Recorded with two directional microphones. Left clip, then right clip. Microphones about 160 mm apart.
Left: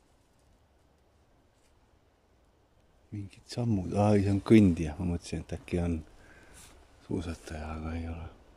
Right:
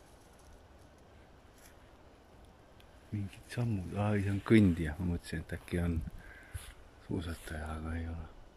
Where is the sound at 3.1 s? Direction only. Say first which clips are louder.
Left 3 dB; 30° left (ahead or behind).